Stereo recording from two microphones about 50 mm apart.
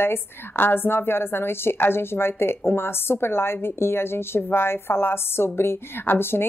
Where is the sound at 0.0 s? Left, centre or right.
Left.